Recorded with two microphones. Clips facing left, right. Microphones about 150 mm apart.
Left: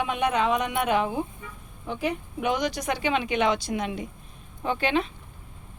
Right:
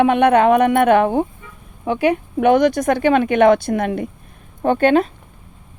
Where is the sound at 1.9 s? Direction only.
70° right (ahead or behind); by 5.1 s 50° right (ahead or behind).